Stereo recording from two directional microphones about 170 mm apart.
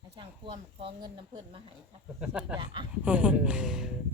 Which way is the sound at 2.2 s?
5° right (ahead or behind).